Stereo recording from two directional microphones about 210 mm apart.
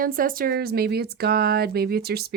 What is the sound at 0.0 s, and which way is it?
Speech, 40° right (ahead or behind).